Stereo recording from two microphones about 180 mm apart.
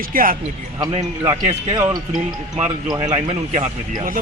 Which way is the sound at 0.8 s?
20° right (ahead or behind).